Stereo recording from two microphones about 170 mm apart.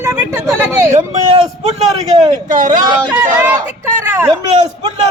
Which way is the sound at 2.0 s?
40° right (ahead or behind).